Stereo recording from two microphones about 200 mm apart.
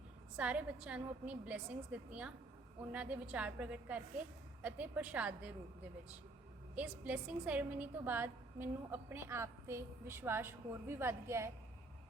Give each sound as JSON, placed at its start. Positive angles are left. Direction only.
{"t": 0.3, "sound": "a woman's voice", "side_deg": -5}
{"t": 6.7, "sound": "a woman's voice", "side_deg": -5}